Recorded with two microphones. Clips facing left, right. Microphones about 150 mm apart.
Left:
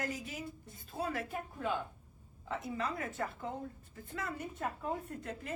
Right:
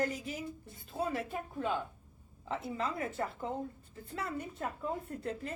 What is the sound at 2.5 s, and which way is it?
A woman's voice, 25° right (ahead or behind).